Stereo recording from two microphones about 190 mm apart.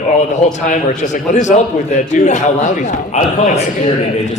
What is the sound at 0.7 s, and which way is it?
A man's voice, 40° left (ahead or behind).